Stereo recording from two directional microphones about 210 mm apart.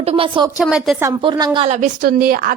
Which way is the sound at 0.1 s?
25° right (ahead or behind).